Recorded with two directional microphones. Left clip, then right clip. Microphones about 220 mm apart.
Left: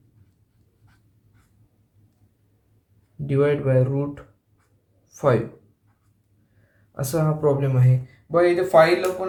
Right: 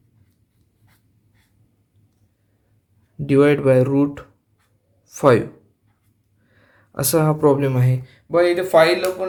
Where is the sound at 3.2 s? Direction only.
45° right (ahead or behind).